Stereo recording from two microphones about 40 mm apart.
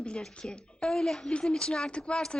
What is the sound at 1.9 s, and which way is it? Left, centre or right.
Speech, left.